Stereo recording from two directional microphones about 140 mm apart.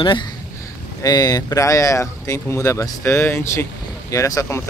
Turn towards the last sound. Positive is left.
turn(degrees=20)  # may be behind; listen again after turning